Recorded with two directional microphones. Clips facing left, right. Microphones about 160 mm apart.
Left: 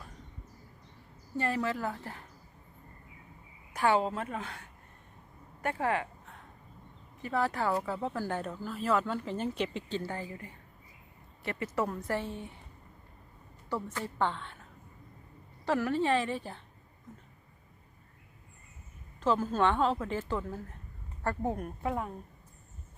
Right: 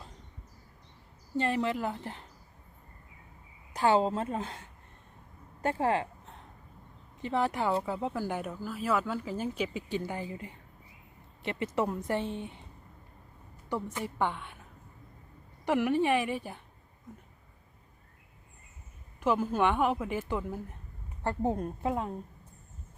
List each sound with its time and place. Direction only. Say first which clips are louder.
1.4 s a woman's voice: right 2 dB; 20° right (ahead or behind)
3.7 s a woman's voice: right 2 dB; 25° right (ahead or behind)
13.7 s speech: right 1 dB; 15° right (ahead or behind)
15.6 s speech: right 2 dB; 15° right (ahead or behind)
19.2 s speech: even; 15° right (ahead or behind)
21.2 s a woman's voice: right 2 dB; 25° right (ahead or behind)